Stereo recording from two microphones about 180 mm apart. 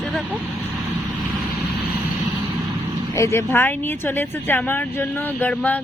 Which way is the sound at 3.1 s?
15° left (ahead or behind).